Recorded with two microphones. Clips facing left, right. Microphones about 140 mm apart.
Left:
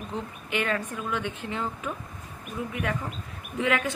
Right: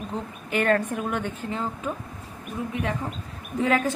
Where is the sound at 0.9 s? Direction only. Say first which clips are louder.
Right 3 dB; 55° right (ahead or behind); by 1.9 s 35° right (ahead or behind).